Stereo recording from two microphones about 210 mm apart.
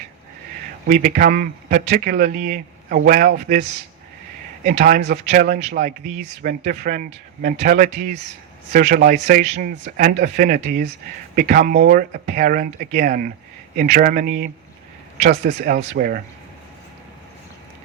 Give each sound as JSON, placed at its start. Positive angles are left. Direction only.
{"t": 0.9, "sound": "a man's voice", "side_deg": -40}